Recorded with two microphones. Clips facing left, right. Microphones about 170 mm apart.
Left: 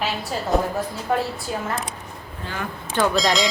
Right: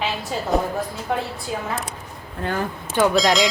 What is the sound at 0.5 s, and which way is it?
Bell, centre (ahead or behind).